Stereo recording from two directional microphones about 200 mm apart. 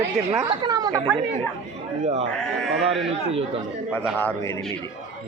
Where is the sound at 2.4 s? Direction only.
Centre (ahead or behind).